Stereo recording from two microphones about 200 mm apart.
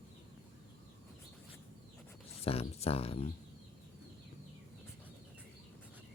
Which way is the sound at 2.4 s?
30° left (ahead or behind).